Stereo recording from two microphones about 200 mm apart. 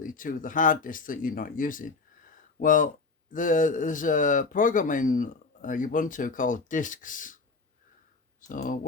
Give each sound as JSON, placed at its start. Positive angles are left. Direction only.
{"t": 0.0, "sound": "a man's voice", "side_deg": 45}